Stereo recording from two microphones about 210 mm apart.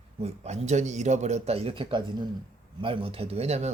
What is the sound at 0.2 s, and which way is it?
A man's voice, 30° right (ahead or behind).